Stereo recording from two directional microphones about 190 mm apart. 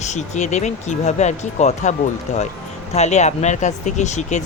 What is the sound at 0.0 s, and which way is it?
Speech, 40° left (ahead or behind).